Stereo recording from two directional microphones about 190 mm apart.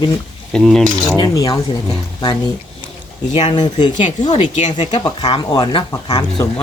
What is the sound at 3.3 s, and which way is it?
Speech, 35° left (ahead or behind).